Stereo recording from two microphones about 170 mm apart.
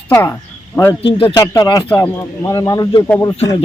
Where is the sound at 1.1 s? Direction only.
30° left (ahead or behind).